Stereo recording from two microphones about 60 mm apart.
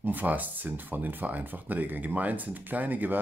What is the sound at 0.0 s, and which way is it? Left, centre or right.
Speech, right.